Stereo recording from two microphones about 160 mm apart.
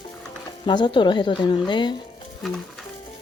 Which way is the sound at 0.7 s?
30° left (ahead or behind).